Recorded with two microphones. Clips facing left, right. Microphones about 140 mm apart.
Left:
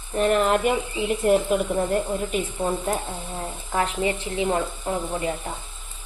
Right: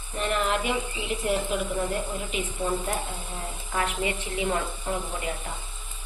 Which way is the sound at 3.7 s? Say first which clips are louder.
Left 4 dB; 30° left (ahead or behind).